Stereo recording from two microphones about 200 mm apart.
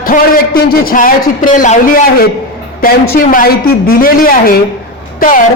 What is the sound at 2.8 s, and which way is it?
Speech, 45° left (ahead or behind).